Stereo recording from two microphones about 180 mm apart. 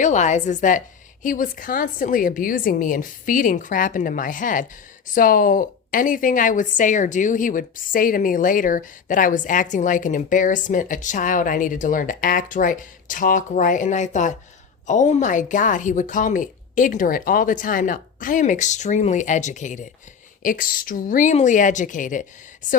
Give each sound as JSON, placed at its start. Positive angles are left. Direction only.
{"t": 0.0, "sound": "a woman's voice", "side_deg": 40}